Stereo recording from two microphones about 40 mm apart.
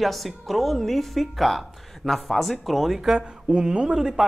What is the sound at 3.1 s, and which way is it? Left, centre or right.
Speech, centre.